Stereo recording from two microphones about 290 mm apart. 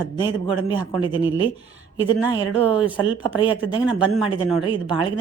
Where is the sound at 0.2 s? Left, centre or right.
Centre.